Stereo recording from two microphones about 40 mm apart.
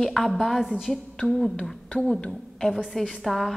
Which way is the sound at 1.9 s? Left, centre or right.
Left.